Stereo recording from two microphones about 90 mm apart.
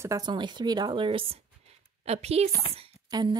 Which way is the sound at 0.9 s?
75° right (ahead or behind).